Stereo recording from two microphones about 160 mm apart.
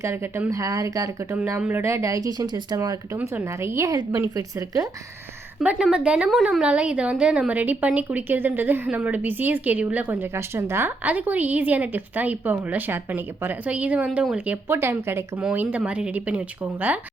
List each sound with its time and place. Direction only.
0.0 s speech: 15° right (ahead or behind)
5.5 s a woman's voice: 5° right (ahead or behind)